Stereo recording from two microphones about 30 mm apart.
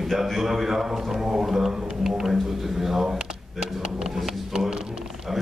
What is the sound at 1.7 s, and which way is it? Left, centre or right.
A man's voice, right.